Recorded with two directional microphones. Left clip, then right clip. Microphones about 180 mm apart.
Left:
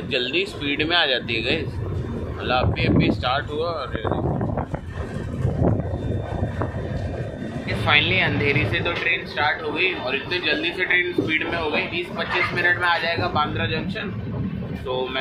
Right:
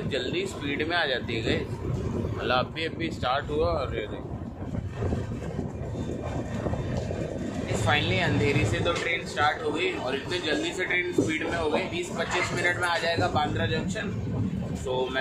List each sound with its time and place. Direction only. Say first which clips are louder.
0.1 s speech: left 8 dB; 10° left (ahead or behind)
2.4 s speech: left 5 dB; 5° right (ahead or behind)
3.5 s speech: left 1 dB; 15° right (ahead or behind)
7.8 s speech: left 8 dB; 10° right (ahead or behind)